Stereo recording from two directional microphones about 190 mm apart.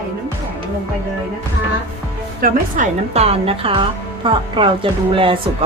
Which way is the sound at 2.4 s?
40° right (ahead or behind).